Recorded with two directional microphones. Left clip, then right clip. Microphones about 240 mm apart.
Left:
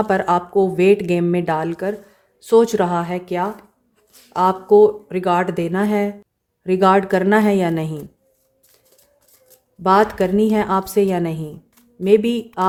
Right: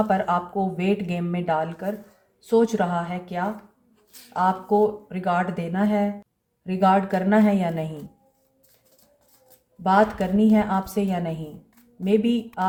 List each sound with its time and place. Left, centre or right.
0.1 s speech: left
9.8 s speech: left